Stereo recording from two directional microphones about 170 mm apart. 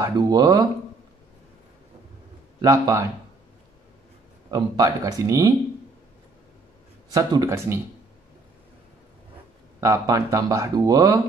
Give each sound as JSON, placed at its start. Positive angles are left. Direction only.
{"t": 0.0, "sound": "speech", "side_deg": -20}
{"t": 2.6, "sound": "speech", "side_deg": -20}
{"t": 4.5, "sound": "speech", "side_deg": -20}
{"t": 7.1, "sound": "speech", "side_deg": -20}
{"t": 9.8, "sound": "speech", "side_deg": -20}